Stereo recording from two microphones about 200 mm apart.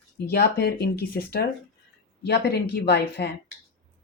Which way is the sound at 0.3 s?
50° left (ahead or behind).